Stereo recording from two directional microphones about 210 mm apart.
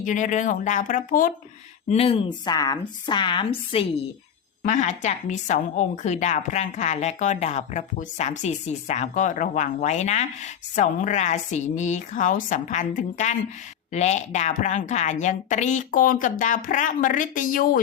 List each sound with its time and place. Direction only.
0.0 s a woman's voice: 35° left (ahead or behind)
1.9 s a woman's voice: 25° left (ahead or behind)
4.6 s a woman's voice: 35° left (ahead or behind)